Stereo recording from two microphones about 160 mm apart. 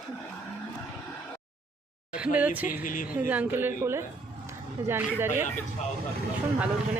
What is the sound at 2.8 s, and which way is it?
Speech, 55° left (ahead or behind).